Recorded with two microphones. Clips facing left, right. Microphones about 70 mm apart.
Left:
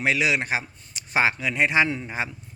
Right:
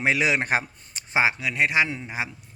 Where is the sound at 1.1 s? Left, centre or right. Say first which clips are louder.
Even; centre.